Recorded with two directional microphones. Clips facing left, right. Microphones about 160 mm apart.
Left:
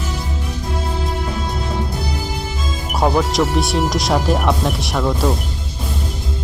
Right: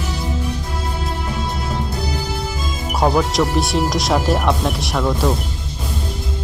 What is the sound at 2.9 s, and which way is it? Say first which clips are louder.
Speech: even; centre (ahead or behind).